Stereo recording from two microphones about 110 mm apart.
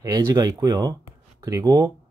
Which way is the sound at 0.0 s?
35° right (ahead or behind).